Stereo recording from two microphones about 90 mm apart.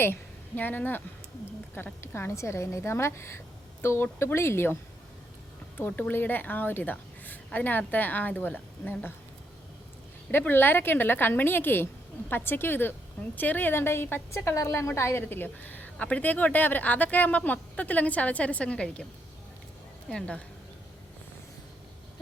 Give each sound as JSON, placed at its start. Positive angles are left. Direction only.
{"t": 0.0, "sound": "a woman's voice", "side_deg": 20}
{"t": 10.3, "sound": "a woman's voice", "side_deg": 25}
{"t": 20.1, "sound": "speech", "side_deg": 10}